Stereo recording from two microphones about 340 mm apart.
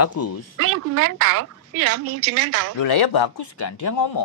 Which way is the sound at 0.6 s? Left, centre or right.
Right.